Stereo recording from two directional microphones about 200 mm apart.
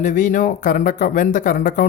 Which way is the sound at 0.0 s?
40° left (ahead or behind).